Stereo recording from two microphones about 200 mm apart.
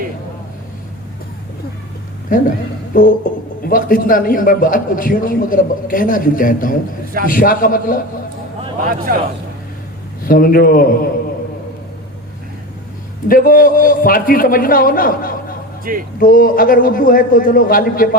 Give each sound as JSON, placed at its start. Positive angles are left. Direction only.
{"t": 2.3, "sound": "a man's voice", "side_deg": 45}
{"t": 2.9, "sound": "music", "side_deg": 45}
{"t": 3.6, "sound": "a man's voice", "side_deg": 45}
{"t": 8.8, "sound": "speech", "side_deg": -45}
{"t": 10.2, "sound": "a man's voice", "side_deg": 45}
{"t": 13.2, "sound": "a man's voice", "side_deg": 45}
{"t": 15.9, "sound": "speech", "side_deg": -45}
{"t": 16.2, "sound": "a man's voice", "side_deg": 45}